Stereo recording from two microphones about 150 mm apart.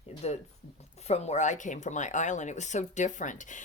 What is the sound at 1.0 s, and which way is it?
Speech, 45° left (ahead or behind).